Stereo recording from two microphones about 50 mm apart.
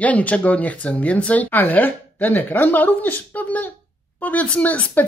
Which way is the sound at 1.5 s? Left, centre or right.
Left.